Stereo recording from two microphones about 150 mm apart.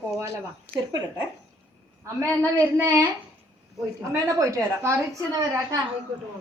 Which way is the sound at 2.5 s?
20° right (ahead or behind).